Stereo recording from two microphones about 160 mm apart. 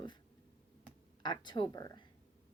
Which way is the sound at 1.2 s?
30° left (ahead or behind).